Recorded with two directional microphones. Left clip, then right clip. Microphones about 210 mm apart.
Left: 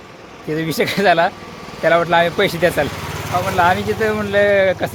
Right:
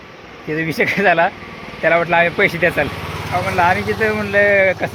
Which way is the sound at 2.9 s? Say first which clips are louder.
Even; 55° left (ahead or behind).